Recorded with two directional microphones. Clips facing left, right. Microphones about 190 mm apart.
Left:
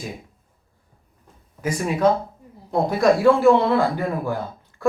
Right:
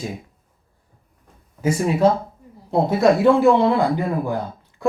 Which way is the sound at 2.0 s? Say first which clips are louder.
Left 2 dB; 30° right (ahead or behind).